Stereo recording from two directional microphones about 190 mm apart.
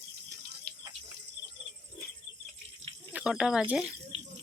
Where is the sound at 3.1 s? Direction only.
5° right (ahead or behind).